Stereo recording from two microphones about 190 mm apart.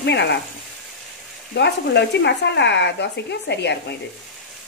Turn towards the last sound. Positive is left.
turn(degrees=65)  # may be behind; listen again after turning